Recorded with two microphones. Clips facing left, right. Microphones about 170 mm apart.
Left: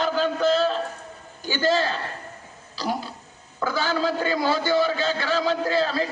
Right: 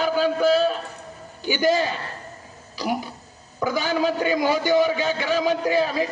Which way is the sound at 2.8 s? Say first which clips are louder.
Right 2 dB; 15° right (ahead or behind).